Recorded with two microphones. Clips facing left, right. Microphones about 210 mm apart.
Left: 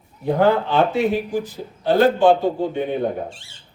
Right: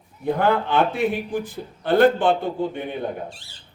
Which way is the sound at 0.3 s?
55° right (ahead or behind).